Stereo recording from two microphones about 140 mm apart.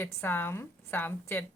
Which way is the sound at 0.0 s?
15° left (ahead or behind).